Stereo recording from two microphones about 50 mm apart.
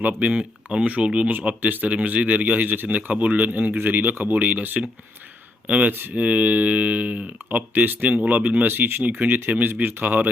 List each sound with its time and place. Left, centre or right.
0.0 s speech: right
5.9 s speech: right
6.1 s speech: right